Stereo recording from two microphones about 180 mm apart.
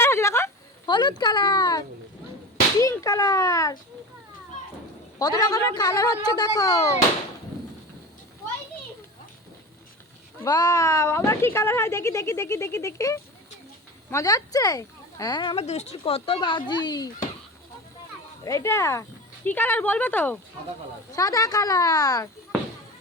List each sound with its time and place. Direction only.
0.0 s a sound: 15° left (ahead or behind)
2.8 s speech: 15° left (ahead or behind)
5.2 s speech: 20° left (ahead or behind)
10.4 s speech: 20° left (ahead or behind)
15.5 s speech: 35° left (ahead or behind)
18.4 s speech: 15° left (ahead or behind)